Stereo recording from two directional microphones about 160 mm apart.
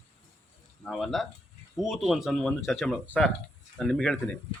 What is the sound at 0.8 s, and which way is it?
Speech, centre (ahead or behind).